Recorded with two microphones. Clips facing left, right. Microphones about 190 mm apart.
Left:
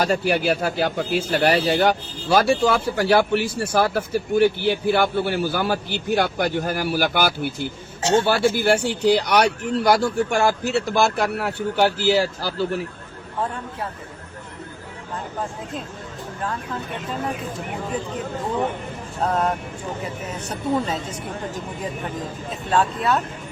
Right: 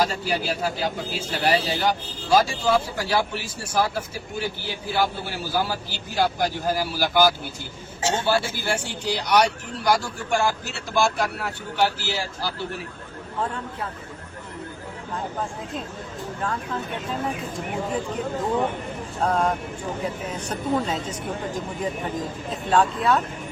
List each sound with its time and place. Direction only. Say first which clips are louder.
0.0 s speech: left 4 dB; 65° left (ahead or behind)
19.2 s speech: left 1 dB; 5° left (ahead or behind)
22.7 s speech: even; 5° left (ahead or behind)